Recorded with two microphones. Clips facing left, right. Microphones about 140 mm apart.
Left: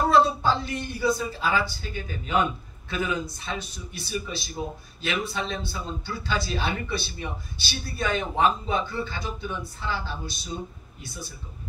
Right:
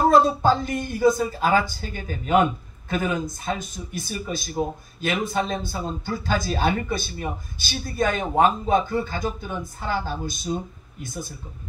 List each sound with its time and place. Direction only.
0.1 s speech: 45° right (ahead or behind)